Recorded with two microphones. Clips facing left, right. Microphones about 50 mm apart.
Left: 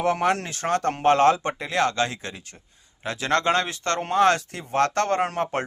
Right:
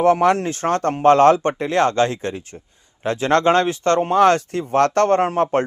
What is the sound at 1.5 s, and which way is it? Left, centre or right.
A man's voice, right.